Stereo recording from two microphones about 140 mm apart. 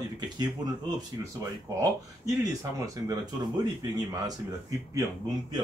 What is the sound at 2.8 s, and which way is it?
A man's voice, 25° right (ahead or behind).